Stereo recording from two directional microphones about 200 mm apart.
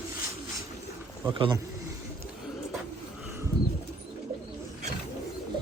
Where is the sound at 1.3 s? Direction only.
20° right (ahead or behind).